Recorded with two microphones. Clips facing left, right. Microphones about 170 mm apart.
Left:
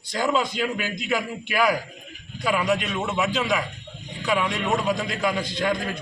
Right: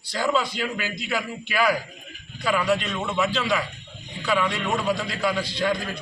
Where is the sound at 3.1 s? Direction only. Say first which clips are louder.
Right 1 dB; 15° left (ahead or behind).